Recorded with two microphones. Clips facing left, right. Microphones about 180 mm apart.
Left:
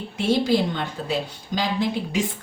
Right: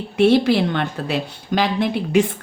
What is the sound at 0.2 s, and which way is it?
A woman's voice, 65° right (ahead or behind).